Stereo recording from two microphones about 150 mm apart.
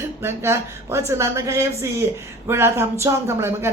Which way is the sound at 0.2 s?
15° right (ahead or behind).